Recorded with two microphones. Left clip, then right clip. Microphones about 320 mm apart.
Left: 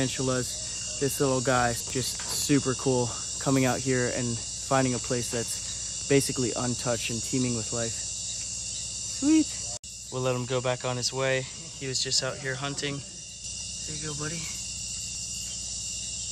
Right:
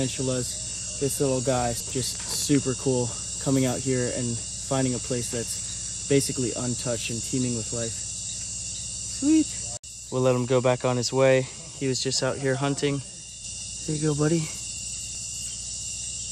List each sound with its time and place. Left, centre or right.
1.0 s speech: centre
2.5 s cricket: centre
3.5 s cricket: centre
9.2 s cricket: left
10.1 s speech: centre